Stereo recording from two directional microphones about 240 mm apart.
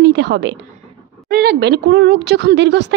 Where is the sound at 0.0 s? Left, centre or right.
Right.